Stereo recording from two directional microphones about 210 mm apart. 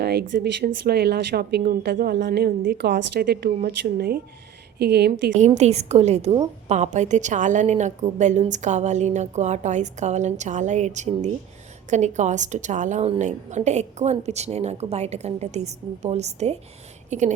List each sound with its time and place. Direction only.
0.0 s speech: 50° right (ahead or behind)
5.5 s a woman's voice: 30° right (ahead or behind)